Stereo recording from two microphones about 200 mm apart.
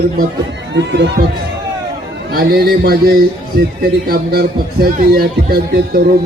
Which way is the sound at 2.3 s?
50° right (ahead or behind).